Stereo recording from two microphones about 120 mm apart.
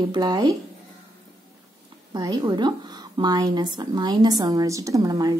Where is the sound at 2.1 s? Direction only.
35° right (ahead or behind).